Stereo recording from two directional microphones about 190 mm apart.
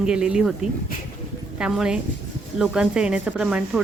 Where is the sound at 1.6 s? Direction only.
5° right (ahead or behind).